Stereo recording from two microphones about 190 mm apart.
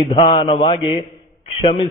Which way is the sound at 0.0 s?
25° left (ahead or behind).